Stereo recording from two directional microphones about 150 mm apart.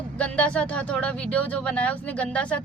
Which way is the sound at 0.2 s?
10° left (ahead or behind).